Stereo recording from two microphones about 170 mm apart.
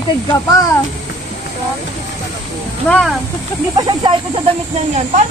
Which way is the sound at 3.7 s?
25° right (ahead or behind).